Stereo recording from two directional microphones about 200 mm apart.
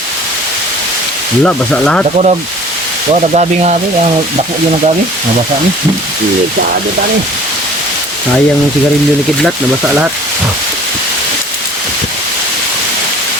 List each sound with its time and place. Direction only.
1.5 s speech: 5° left (ahead or behind)
2.1 s speech: 35° right (ahead or behind)